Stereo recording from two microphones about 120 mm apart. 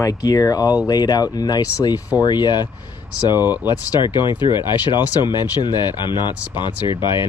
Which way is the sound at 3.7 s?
35° left (ahead or behind).